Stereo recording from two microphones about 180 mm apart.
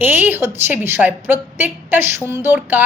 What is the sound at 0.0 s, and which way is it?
A woman's voice, 10° right (ahead or behind).